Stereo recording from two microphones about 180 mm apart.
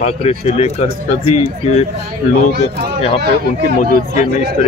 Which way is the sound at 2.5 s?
65° right (ahead or behind).